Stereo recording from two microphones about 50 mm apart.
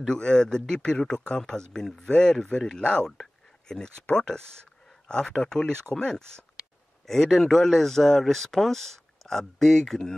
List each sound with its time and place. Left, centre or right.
0.0 s speech: centre